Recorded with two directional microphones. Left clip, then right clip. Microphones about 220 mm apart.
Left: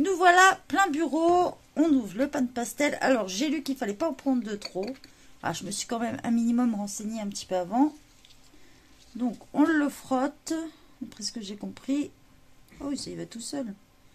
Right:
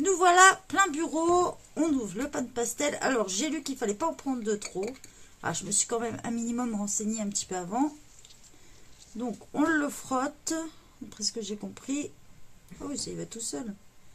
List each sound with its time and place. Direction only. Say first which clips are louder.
0.0 s speech: left 1 dB; 30° left (ahead or behind)
9.2 s speech: left 3 dB; 25° left (ahead or behind)